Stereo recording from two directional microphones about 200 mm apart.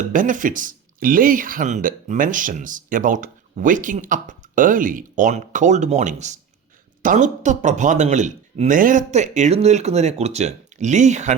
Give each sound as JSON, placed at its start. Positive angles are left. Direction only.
{"t": 0.0, "sound": "speech", "side_deg": -40}